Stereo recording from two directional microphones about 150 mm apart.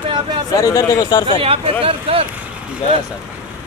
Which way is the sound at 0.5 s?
20° left (ahead or behind).